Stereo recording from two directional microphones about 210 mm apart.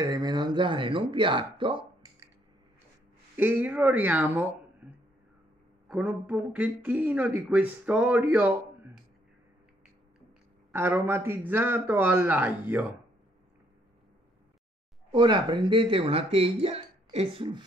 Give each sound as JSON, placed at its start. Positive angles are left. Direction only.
{"t": 0.0, "sound": "speech", "side_deg": -20}
{"t": 3.3, "sound": "speech", "side_deg": -10}
{"t": 5.9, "sound": "speech", "side_deg": -5}
{"t": 10.7, "sound": "speech", "side_deg": -10}
{"t": 15.0, "sound": "speech", "side_deg": -20}